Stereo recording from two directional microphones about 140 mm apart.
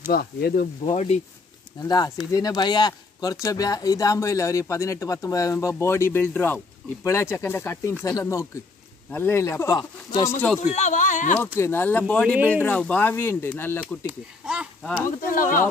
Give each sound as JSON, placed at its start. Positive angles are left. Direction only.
{"t": 0.1, "sound": "speech", "side_deg": 90}
{"t": 0.9, "sound": "speech", "side_deg": 50}
{"t": 1.8, "sound": "speech", "side_deg": 25}
{"t": 10.6, "sound": "speech", "side_deg": 55}
{"t": 11.3, "sound": "speech", "side_deg": 15}
{"t": 12.4, "sound": "speech", "side_deg": -10}
{"t": 12.6, "sound": "speech", "side_deg": 10}
{"t": 14.0, "sound": "speech", "side_deg": -5}
{"t": 15.0, "sound": "speech", "side_deg": 75}